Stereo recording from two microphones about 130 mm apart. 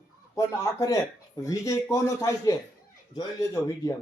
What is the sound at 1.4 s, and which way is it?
Speech, 25° left (ahead or behind).